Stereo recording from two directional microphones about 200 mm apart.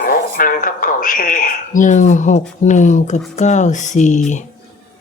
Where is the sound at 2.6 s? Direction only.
40° left (ahead or behind).